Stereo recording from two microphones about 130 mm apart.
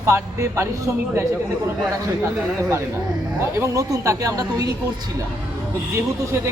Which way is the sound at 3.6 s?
25° right (ahead or behind).